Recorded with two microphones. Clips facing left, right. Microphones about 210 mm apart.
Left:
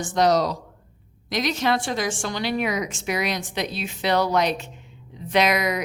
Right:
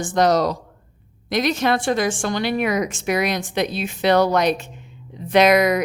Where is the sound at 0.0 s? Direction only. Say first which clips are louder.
Right 2 dB; 50° right (ahead or behind).